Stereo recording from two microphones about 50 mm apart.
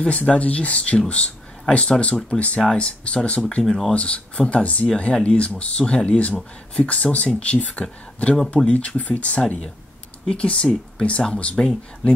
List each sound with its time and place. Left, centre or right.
0.0 s speech: left
2.6 s speech: centre
3.9 s speech: left